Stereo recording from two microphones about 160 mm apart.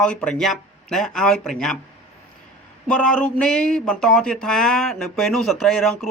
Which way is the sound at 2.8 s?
5° left (ahead or behind).